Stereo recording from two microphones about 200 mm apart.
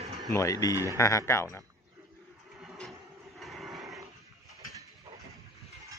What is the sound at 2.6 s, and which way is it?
Vehicle, centre (ahead or behind).